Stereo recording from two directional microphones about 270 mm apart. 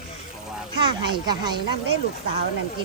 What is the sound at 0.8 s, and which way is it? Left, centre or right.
Speech, centre.